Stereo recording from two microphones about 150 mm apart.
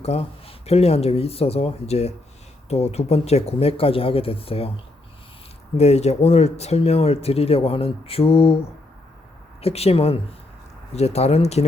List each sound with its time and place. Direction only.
0.0 s speech: 40° left (ahead or behind)
5.7 s speech: 45° left (ahead or behind)
9.6 s speech: 45° left (ahead or behind)